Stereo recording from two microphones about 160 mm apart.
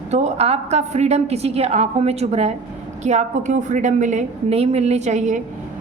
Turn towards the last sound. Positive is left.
turn(degrees=-45)  # may be behind; listen again after turning